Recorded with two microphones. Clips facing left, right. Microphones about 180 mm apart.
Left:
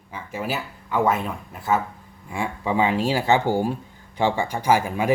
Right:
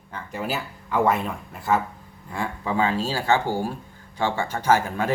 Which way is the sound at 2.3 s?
15° left (ahead or behind).